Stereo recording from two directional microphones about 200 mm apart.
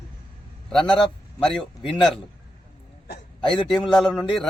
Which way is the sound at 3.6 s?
Centre (ahead or behind).